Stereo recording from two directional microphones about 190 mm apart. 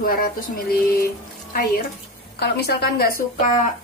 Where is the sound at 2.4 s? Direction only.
60° left (ahead or behind).